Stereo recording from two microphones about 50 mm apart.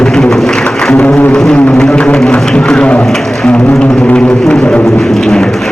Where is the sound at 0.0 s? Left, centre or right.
Centre.